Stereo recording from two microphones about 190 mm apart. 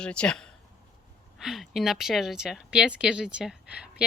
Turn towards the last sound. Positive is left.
turn(degrees=-5)  # may be behind; listen again after turning